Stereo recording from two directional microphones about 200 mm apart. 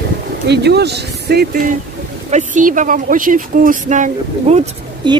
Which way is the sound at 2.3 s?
40° right (ahead or behind).